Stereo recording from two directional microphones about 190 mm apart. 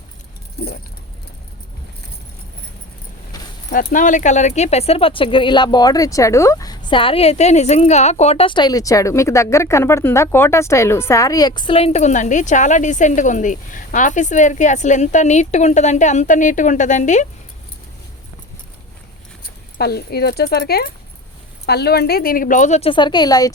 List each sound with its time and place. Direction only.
0.6 s keys jangling: 60° left (ahead or behind)
3.3 s a sound: 20° left (ahead or behind)
3.9 s speech: 40° left (ahead or behind)
19.8 s speech: 55° left (ahead or behind); by 23.6 s 20° left (ahead or behind)